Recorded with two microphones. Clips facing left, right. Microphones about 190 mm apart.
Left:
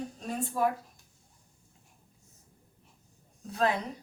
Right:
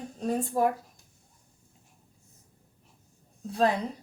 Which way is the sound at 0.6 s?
45° right (ahead or behind).